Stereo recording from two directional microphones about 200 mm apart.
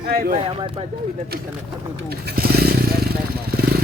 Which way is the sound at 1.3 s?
50° right (ahead or behind).